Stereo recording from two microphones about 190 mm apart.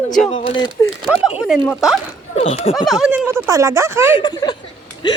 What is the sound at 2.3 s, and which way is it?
Speech, 30° left (ahead or behind).